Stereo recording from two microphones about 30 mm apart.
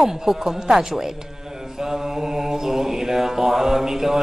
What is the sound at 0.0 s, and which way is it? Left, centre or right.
Speech, centre.